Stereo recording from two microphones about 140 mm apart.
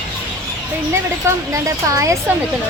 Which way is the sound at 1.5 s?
20° right (ahead or behind).